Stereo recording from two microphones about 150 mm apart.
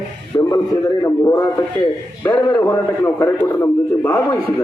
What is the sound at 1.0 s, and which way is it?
A man's voice, 20° left (ahead or behind).